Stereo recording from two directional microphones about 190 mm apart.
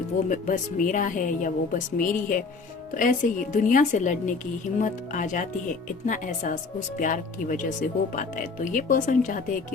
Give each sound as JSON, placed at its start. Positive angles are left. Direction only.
{"t": 0.3, "sound": "speech", "side_deg": 45}